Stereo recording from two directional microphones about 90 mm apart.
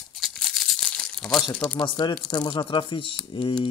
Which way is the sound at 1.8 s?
65° left (ahead or behind).